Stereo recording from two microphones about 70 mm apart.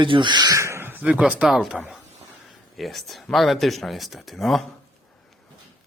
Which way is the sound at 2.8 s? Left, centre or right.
Centre.